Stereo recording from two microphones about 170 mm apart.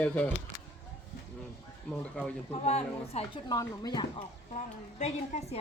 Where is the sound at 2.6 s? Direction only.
40° left (ahead or behind).